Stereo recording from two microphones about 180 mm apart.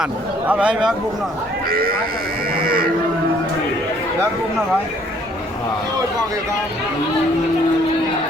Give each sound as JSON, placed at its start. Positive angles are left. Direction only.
{"t": 0.0, "sound": "speech", "side_deg": -5}
{"t": 1.7, "sound": "speech", "side_deg": -55}
{"t": 2.6, "sound": "cattle", "side_deg": -55}